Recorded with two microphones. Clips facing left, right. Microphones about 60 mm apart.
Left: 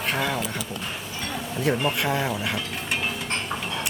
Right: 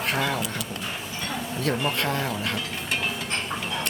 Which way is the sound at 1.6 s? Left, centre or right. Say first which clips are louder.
Left 2 dB; centre.